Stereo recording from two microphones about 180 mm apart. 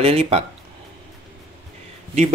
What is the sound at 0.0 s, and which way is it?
Speech, 35° right (ahead or behind).